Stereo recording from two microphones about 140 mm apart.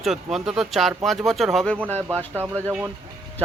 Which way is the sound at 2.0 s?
15° right (ahead or behind).